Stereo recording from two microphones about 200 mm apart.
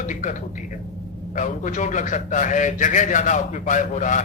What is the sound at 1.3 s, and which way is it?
A man's voice, 40° left (ahead or behind).